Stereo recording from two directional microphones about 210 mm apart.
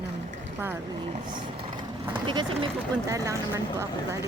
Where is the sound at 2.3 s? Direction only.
25° right (ahead or behind).